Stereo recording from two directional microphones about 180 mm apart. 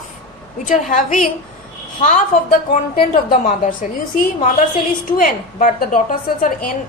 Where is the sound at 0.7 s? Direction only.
45° left (ahead or behind).